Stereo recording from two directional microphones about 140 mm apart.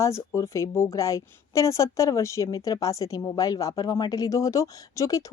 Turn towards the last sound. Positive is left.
turn(degrees=25)  # may be behind; listen again after turning